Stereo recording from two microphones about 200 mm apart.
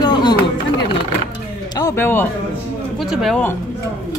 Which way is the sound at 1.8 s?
15° left (ahead or behind).